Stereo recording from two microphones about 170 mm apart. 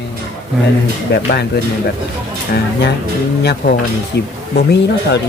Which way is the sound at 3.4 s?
70° left (ahead or behind).